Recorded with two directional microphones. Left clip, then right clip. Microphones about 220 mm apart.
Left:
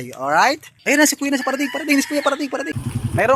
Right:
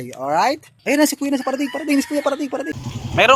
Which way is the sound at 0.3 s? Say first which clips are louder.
Left 2 dB; centre (ahead or behind).